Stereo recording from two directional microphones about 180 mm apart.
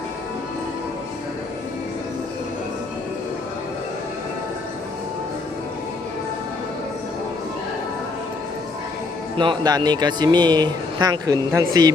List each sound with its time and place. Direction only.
9.4 s speech: 25° right (ahead or behind)